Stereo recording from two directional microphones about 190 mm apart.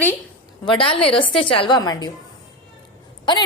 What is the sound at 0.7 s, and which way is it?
A woman's voice, 30° left (ahead or behind).